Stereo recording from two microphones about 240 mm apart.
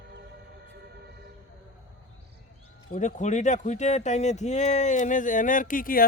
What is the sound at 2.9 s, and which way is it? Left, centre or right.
Speech, left.